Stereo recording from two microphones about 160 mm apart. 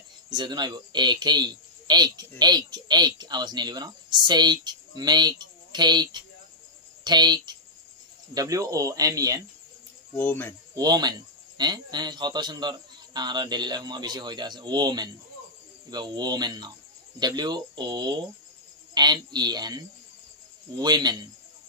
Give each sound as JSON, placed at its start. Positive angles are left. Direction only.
{"t": 0.3, "sound": "speech", "side_deg": -25}
{"t": 10.1, "sound": "speech", "side_deg": 10}
{"t": 10.7, "sound": "speech", "side_deg": -25}